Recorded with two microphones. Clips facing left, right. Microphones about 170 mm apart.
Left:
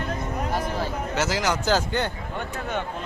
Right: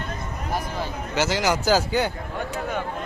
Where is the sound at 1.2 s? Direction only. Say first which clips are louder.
Right 3 dB; centre (ahead or behind).